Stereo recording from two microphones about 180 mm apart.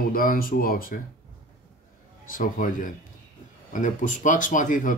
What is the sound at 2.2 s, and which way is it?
Speech, 50° left (ahead or behind).